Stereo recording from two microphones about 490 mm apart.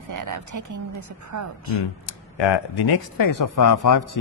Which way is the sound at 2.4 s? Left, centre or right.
Left.